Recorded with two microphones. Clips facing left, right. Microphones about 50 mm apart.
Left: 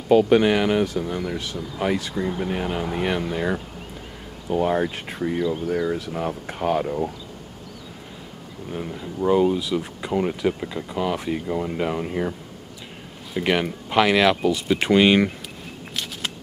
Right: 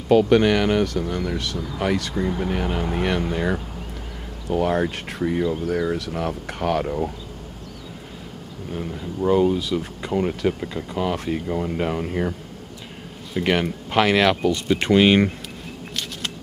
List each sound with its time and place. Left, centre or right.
0.1 s speech: centre
6.8 s speech: centre
8.7 s speech: centre